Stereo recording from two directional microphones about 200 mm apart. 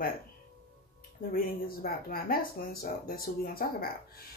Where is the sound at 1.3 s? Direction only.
45° left (ahead or behind).